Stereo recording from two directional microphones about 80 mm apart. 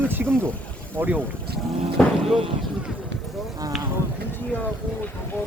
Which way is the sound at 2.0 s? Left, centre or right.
Centre.